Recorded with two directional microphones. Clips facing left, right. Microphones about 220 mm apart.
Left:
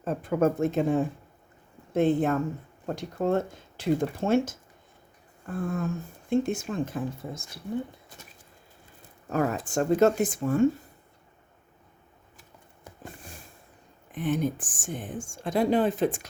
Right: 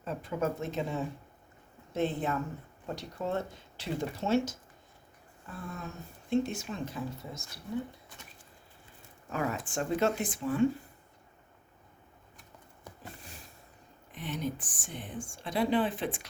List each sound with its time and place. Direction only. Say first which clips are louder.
0.0 s a woman's voice: left 8 dB; 50° left (ahead or behind)
9.3 s a woman's voice: left 7 dB; 40° left (ahead or behind)
13.0 s sniff: left 6 dB; 50° left (ahead or behind)
14.1 s a woman's voice: left 8 dB; 50° left (ahead or behind)